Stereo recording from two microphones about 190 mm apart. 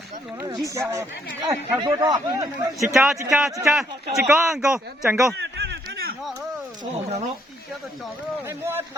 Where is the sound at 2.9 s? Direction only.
Centre (ahead or behind).